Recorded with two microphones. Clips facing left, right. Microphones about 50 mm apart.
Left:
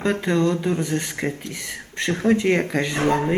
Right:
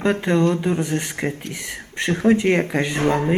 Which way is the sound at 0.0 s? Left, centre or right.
Centre.